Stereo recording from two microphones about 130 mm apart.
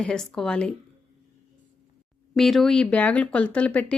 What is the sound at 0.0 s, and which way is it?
Speech, 5° left (ahead or behind).